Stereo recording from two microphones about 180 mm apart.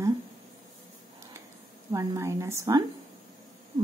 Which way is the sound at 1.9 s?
15° right (ahead or behind).